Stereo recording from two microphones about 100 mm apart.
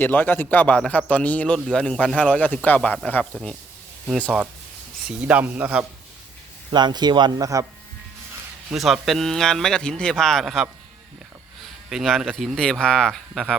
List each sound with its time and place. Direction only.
0.0 s a man's voice: 20° left (ahead or behind)
5.0 s a man's voice: 15° right (ahead or behind)
6.7 s a man's voice: 45° right (ahead or behind)
8.7 s a man's voice: centre (ahead or behind)